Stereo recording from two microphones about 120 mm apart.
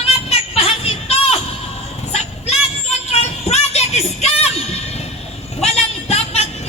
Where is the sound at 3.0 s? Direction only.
65° left (ahead or behind).